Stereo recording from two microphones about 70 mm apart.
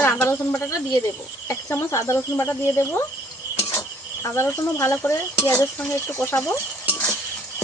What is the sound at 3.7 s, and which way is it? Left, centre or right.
Cricket, left.